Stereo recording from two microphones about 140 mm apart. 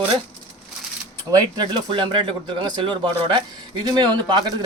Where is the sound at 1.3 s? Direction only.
30° right (ahead or behind).